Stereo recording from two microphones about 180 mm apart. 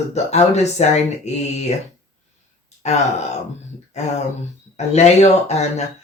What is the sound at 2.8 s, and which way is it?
Speech, 40° left (ahead or behind).